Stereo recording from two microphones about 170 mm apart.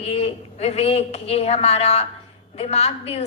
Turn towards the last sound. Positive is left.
turn(degrees=35)  # may be behind; listen again after turning